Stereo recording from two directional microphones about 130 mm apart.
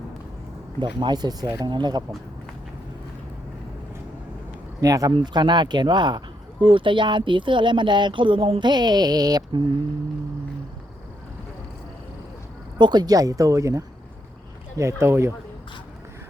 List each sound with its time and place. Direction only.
0.8 s speech: 35° right (ahead or behind)
4.8 s speech: 30° right (ahead or behind)
12.8 s speech: 35° right (ahead or behind)